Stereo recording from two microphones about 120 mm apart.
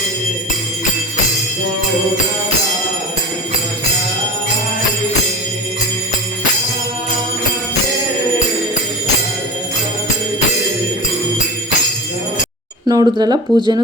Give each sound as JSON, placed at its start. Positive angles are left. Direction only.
{"t": 12.9, "sound": "speech", "side_deg": -35}